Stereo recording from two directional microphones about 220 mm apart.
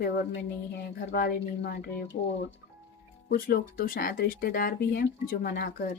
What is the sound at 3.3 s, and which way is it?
A woman's voice, 40° left (ahead or behind).